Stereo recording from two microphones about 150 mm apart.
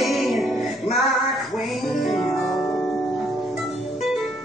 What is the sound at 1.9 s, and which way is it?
Music, centre (ahead or behind).